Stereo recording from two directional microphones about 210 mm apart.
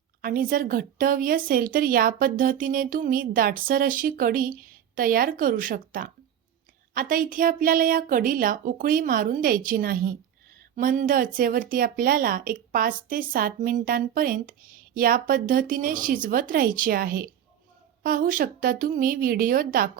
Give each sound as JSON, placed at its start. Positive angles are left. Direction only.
{"t": 0.2, "sound": "speech", "side_deg": -40}